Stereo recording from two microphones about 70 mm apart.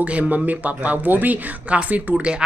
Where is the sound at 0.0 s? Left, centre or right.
Right.